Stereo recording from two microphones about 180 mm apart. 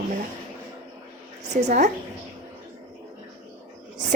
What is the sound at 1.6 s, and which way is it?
Speech, 45° right (ahead or behind).